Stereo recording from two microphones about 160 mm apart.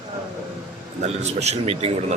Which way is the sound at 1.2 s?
45° right (ahead or behind).